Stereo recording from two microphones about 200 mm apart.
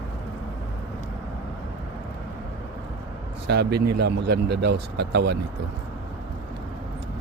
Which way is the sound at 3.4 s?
55° right (ahead or behind).